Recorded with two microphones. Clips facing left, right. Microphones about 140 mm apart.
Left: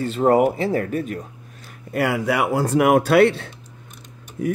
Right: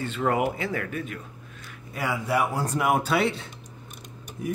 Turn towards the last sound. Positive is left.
turn(degrees=70)  # may be behind; listen again after turning